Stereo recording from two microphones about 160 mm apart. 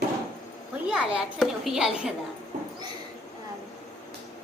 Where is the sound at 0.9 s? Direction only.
5° right (ahead or behind).